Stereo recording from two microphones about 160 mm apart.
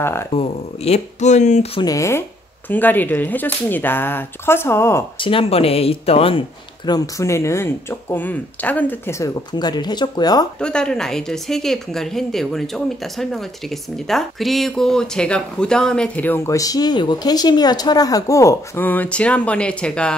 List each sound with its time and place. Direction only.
0.0 s speech: 15° left (ahead or behind)
0.3 s speech: 40° left (ahead or behind)
1.8 s speech: 20° left (ahead or behind)
5.2 s speech: 35° left (ahead or behind)
6.9 s speech: 20° left (ahead or behind)
9.5 s speech: 25° left (ahead or behind)
10.6 s speech: 5° left (ahead or behind)